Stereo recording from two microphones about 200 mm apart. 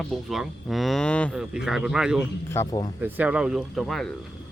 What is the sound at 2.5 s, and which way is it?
Speech, 15° left (ahead or behind).